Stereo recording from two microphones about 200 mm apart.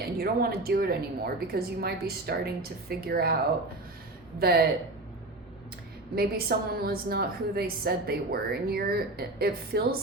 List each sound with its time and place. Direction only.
0.0 s a woman's voice: 50° right (ahead or behind)
4.4 s a woman's voice: 50° right (ahead or behind)
6.1 s a woman's voice: 50° right (ahead or behind)